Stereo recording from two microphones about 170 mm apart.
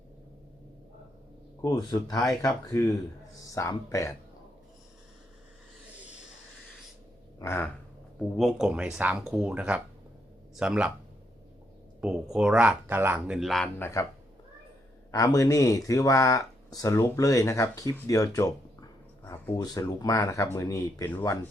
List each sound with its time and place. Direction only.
1.6 s speech: 25° left (ahead or behind)
7.3 s a sound: 15° left (ahead or behind)
8.4 s speech: centre (ahead or behind)
11.9 s speech: 5° right (ahead or behind)
13.7 s speech: 15° left (ahead or behind)
15.1 s speech: 20° left (ahead or behind)